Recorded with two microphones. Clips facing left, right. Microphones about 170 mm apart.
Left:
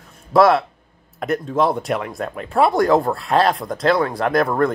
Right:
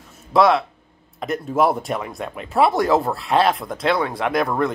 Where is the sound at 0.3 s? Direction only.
Centre (ahead or behind).